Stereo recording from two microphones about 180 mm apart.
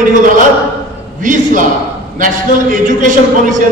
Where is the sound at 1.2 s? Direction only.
45° right (ahead or behind).